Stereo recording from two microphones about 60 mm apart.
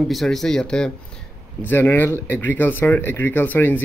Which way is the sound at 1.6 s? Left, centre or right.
Left.